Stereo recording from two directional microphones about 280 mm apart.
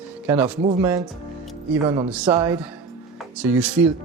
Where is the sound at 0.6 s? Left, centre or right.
Right.